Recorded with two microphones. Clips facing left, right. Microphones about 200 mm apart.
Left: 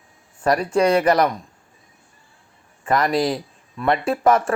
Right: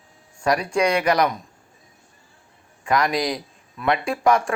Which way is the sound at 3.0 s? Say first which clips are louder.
Left 3 dB; 30° left (ahead or behind).